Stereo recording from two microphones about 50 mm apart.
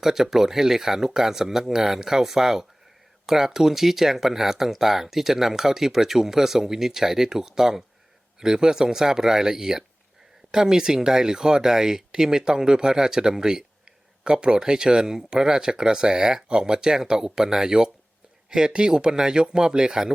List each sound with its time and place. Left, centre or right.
0.0 s speech: centre